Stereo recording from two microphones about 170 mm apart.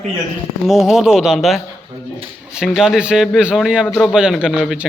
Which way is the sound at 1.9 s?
25° right (ahead or behind).